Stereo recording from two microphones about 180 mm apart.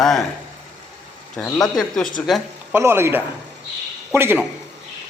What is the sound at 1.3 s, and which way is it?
Speech, 5° left (ahead or behind).